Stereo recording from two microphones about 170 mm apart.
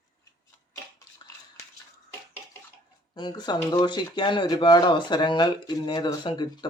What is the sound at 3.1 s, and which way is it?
Speech, 25° left (ahead or behind).